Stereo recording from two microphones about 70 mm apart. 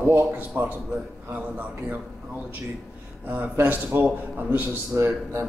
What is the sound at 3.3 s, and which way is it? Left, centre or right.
A man's voice, right.